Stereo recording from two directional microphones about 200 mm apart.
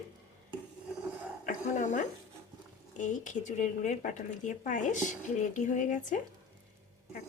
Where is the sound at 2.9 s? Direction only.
40° left (ahead or behind).